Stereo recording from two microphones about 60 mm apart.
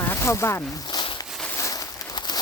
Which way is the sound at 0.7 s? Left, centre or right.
Left.